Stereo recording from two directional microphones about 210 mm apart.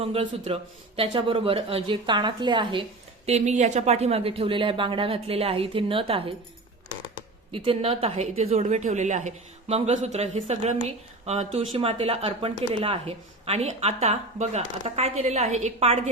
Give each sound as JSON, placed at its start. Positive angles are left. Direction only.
{"t": 0.0, "sound": "speech", "side_deg": -25}
{"t": 3.2, "sound": "speech", "side_deg": -35}
{"t": 7.5, "sound": "speech", "side_deg": -25}